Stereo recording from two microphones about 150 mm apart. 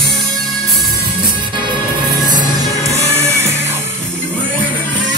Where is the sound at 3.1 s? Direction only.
15° right (ahead or behind).